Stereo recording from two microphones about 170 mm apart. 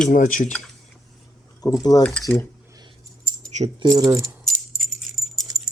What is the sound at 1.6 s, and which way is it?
Speech, 20° left (ahead or behind).